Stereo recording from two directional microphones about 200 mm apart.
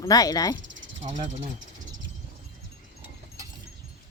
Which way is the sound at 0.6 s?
70° right (ahead or behind).